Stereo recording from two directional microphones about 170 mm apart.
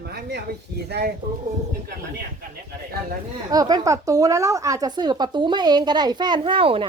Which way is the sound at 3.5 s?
20° right (ahead or behind).